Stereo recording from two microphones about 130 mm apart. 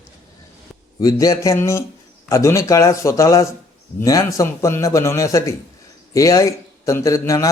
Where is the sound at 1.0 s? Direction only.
25° left (ahead or behind).